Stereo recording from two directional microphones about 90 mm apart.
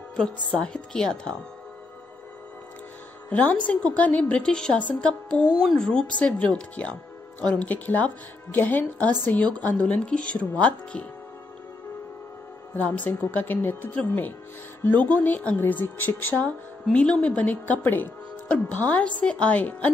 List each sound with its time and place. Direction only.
0.1 s speech: 10° left (ahead or behind)
3.3 s a woman's voice: 15° left (ahead or behind)
12.7 s a woman's voice: 20° left (ahead or behind)
16.9 s speech: 10° left (ahead or behind)